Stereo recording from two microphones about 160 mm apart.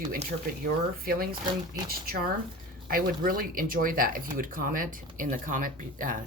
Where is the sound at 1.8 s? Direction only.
65° right (ahead or behind).